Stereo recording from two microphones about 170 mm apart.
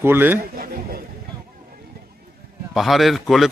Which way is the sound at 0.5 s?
60° right (ahead or behind).